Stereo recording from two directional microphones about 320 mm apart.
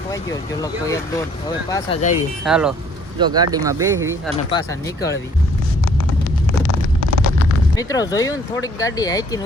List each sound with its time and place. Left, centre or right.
0.6 s speech: centre
2.4 s speech: centre
4.5 s speech: centre
6.7 s vehicle: right
7.8 s speech: centre